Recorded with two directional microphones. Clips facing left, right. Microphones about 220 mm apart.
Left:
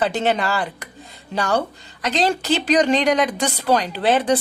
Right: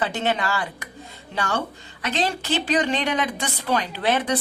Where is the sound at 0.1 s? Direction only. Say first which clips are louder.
Left 4 dB; 35° left (ahead or behind).